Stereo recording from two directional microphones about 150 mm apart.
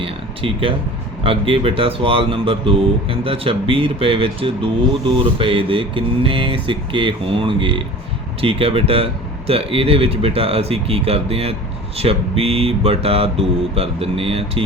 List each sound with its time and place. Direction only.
0.0 s speech: 35° right (ahead or behind)